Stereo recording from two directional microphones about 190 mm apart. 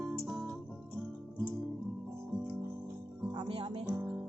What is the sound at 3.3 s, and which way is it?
Music, 30° right (ahead or behind).